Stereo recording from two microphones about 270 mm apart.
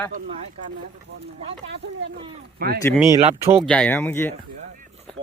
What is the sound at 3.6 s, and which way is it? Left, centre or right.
Speech, centre.